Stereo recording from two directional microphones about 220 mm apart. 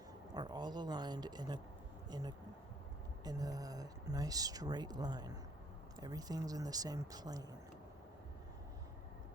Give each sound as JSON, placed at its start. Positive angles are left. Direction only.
{"t": 0.3, "sound": "speech", "side_deg": -20}